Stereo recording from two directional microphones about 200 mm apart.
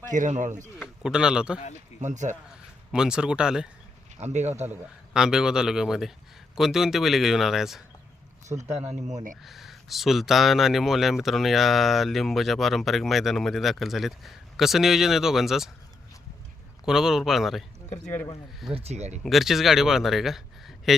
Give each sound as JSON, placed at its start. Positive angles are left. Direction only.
{"t": 0.1, "sound": "speech", "side_deg": -40}
{"t": 0.8, "sound": "speech", "side_deg": -5}
{"t": 2.0, "sound": "speech", "side_deg": -35}
{"t": 2.9, "sound": "speech", "side_deg": -5}
{"t": 4.2, "sound": "speech", "side_deg": -35}
{"t": 4.6, "sound": "speech", "side_deg": -5}
{"t": 8.5, "sound": "speech", "side_deg": -25}
{"t": 9.4, "sound": "speech", "side_deg": 0}
{"t": 16.8, "sound": "speech", "side_deg": -5}
{"t": 18.0, "sound": "speech", "side_deg": 10}
{"t": 18.7, "sound": "speech", "side_deg": -30}
{"t": 19.2, "sound": "a man's voice", "side_deg": 0}